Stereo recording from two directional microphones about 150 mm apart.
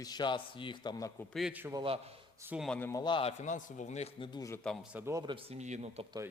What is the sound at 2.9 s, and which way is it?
Speech, 30° left (ahead or behind).